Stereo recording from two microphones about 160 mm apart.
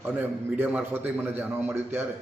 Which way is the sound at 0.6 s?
10° right (ahead or behind).